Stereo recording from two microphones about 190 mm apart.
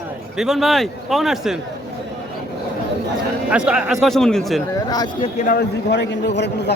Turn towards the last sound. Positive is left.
turn(degrees=65)  # may be behind; listen again after turning